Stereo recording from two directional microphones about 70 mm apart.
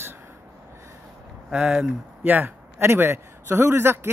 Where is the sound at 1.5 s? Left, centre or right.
Centre.